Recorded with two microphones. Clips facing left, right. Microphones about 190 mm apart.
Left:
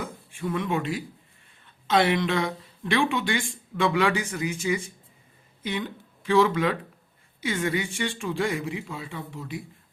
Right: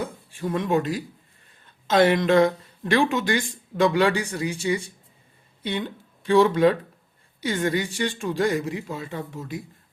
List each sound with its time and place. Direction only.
0.0 s speech: 35° right (ahead or behind)